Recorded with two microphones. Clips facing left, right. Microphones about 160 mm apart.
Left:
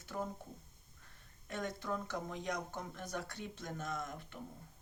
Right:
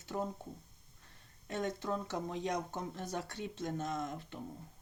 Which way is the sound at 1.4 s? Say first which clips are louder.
Right 4 dB; 25° right (ahead or behind).